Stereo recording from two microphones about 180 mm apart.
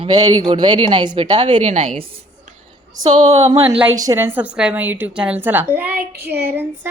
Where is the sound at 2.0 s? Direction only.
30° right (ahead or behind).